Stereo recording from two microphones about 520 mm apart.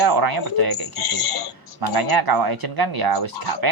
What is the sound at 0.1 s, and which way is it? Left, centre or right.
Speech, right.